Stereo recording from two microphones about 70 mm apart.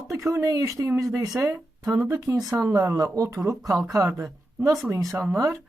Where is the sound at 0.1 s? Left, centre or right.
Right.